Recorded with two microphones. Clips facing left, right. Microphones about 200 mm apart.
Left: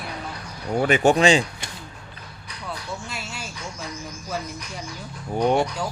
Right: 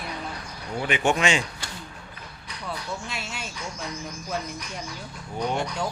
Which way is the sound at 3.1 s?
Centre (ahead or behind).